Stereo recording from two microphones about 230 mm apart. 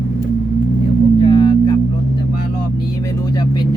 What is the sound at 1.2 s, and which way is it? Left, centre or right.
Vehicle, centre.